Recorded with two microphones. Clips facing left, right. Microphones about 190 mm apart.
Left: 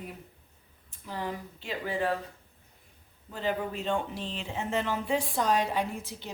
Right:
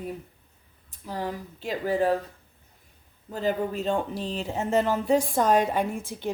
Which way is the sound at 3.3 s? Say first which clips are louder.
Right 5 dB; 40° right (ahead or behind).